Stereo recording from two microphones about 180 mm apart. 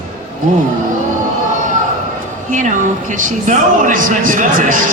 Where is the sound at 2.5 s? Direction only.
45° right (ahead or behind).